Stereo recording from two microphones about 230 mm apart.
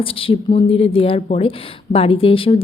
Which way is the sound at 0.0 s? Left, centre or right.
Left.